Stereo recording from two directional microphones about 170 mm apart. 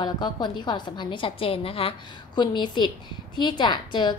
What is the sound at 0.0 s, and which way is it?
A woman's voice, 25° left (ahead or behind).